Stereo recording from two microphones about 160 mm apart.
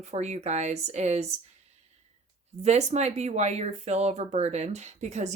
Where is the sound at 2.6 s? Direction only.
45° right (ahead or behind).